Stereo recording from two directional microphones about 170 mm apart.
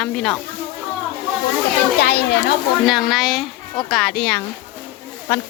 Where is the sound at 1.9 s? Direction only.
75° left (ahead or behind).